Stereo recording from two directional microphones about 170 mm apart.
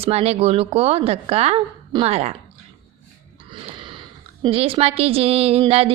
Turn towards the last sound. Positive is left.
turn(degrees=-35)  # may be behind; listen again after turning